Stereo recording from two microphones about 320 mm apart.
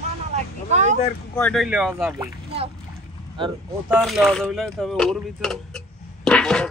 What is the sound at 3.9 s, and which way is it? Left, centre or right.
Speech, centre.